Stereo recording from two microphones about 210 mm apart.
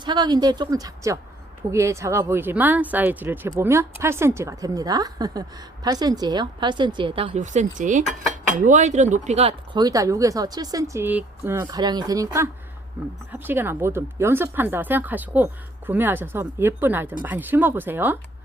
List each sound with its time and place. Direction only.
0.0 s a woman's voice: 20° right (ahead or behind)